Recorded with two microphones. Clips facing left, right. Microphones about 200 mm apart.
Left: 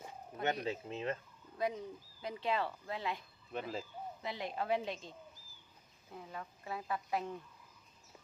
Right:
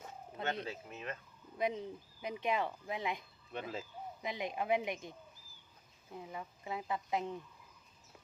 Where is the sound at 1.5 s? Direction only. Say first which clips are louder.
Right 1 dB; 20° right (ahead or behind).